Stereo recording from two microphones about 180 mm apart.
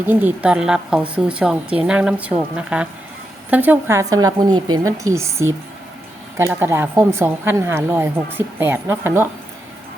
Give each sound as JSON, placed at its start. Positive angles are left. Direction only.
{"t": 0.0, "sound": "a woman's voice", "side_deg": -10}